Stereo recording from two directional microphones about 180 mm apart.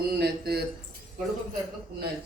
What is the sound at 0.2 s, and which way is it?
Speech, 60° right (ahead or behind).